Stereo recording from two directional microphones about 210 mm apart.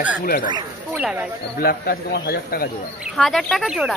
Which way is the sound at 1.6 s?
45° left (ahead or behind).